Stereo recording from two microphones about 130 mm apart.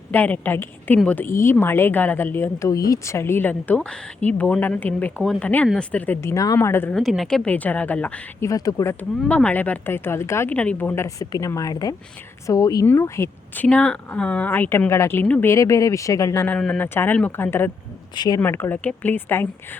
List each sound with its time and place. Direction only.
0.1 s speech: 15° left (ahead or behind)
6.3 s speech: 25° left (ahead or behind)
6.9 s speech: centre (ahead or behind)
8.4 s speech: 25° left (ahead or behind)
9.2 s speech: 10° left (ahead or behind)
13.7 s speech: 10° left (ahead or behind)